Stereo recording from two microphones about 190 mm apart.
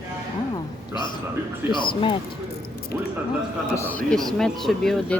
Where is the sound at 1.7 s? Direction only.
25° left (ahead or behind).